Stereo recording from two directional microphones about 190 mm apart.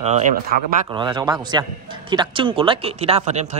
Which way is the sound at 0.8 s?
25° right (ahead or behind).